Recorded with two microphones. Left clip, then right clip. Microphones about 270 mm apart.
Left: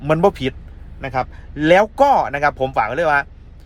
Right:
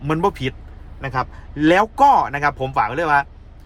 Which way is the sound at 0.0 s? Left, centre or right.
Centre.